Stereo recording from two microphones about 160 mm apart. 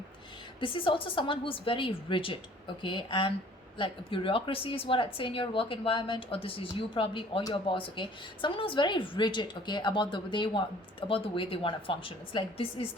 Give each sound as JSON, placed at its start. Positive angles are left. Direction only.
{"t": 0.6, "sound": "speech", "side_deg": 30}